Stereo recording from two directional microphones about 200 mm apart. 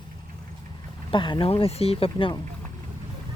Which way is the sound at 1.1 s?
25° left (ahead or behind).